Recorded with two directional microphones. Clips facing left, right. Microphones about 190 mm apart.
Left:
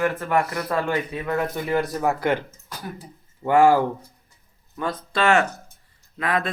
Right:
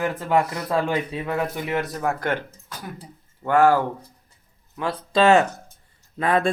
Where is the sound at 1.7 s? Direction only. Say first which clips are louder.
Left 5 dB; centre (ahead or behind).